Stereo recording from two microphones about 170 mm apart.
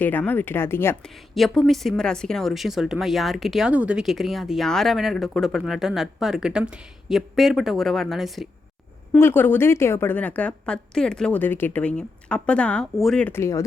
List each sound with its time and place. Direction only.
0.0 s a woman's voice: 10° left (ahead or behind)
1.0 s speech: centre (ahead or behind)
9.1 s a woman's voice: 15° left (ahead or behind)